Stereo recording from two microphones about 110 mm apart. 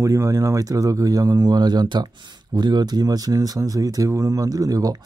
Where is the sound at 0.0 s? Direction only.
30° right (ahead or behind).